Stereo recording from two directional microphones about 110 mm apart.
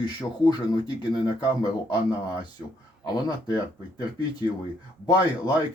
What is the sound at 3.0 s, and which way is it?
Speech, 40° left (ahead or behind).